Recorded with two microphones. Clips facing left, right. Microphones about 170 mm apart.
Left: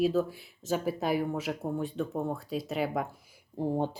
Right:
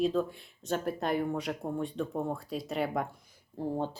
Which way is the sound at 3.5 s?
15° left (ahead or behind).